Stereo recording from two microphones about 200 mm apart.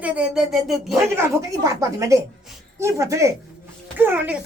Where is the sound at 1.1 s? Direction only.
15° right (ahead or behind).